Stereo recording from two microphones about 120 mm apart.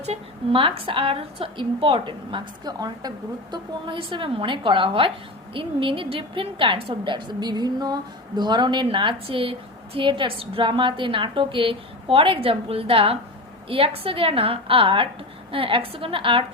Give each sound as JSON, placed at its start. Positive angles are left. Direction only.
{"t": 0.0, "sound": "a woman's voice", "side_deg": -55}